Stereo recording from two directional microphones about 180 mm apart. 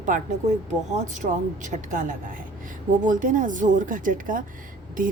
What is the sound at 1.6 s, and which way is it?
A woman's voice, 45° right (ahead or behind).